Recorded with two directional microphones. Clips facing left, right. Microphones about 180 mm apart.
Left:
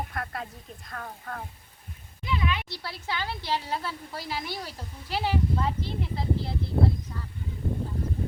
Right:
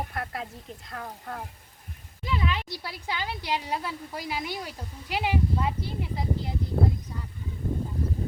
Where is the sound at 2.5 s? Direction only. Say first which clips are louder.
Even; 35° right (ahead or behind).